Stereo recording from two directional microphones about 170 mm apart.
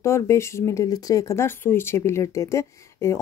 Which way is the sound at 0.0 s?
15° left (ahead or behind).